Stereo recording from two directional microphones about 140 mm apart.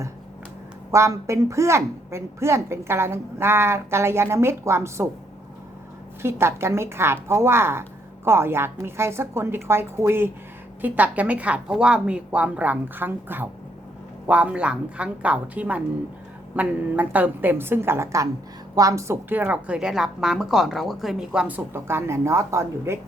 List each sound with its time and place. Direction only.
0.9 s a woman's voice: 20° right (ahead or behind)
6.2 s a woman's voice: 20° right (ahead or behind)